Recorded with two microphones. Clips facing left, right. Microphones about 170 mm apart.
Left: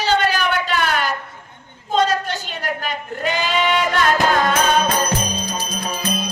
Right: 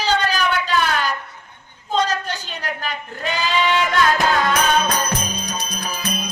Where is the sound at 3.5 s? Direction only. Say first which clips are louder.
Right 1 dB; 25° left (ahead or behind).